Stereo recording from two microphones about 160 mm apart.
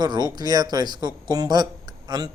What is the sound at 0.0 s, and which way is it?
Speech, 25° right (ahead or behind).